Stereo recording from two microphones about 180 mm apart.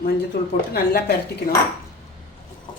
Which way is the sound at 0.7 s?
60° left (ahead or behind).